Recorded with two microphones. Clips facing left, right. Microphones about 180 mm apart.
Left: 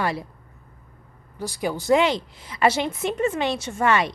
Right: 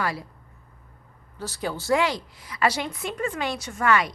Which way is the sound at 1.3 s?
15° left (ahead or behind).